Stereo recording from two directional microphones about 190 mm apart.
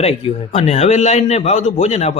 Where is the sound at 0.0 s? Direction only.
35° left (ahead or behind).